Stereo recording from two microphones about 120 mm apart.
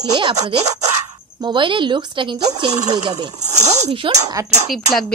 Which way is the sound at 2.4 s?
30° right (ahead or behind).